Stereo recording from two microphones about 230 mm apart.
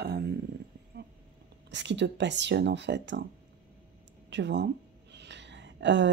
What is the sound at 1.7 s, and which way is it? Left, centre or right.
Speech, right.